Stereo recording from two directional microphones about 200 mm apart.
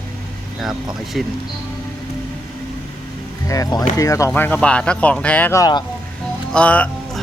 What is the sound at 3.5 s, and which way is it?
Speech, 15° left (ahead or behind).